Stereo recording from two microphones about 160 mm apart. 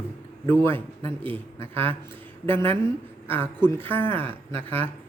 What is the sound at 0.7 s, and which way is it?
Speech, 35° right (ahead or behind).